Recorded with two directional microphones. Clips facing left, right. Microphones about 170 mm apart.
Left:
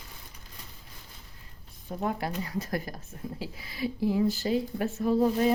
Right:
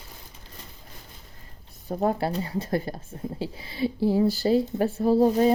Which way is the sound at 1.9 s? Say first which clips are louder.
Right 6 dB; 35° right (ahead or behind).